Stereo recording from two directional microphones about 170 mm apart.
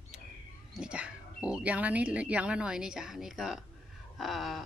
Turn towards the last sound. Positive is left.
turn(degrees=0)  # may be behind; listen again after turning